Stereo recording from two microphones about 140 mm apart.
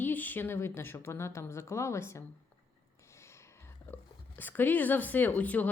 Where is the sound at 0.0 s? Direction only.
15° left (ahead or behind).